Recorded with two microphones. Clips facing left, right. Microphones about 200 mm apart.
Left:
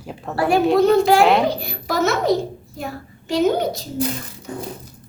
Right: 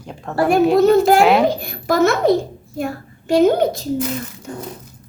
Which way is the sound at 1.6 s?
50° right (ahead or behind).